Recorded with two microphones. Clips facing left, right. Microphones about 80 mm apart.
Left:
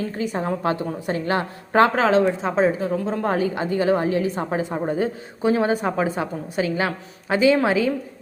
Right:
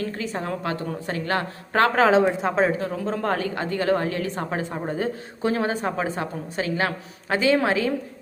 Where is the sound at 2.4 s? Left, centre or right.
Centre.